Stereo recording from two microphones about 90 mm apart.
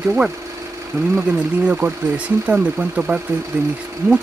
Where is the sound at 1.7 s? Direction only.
15° right (ahead or behind).